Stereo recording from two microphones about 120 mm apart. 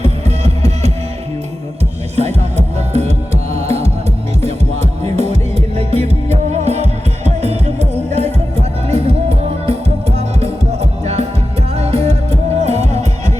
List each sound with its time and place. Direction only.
0.0 s music: 65° right (ahead or behind)
2.1 s music: 65° right (ahead or behind)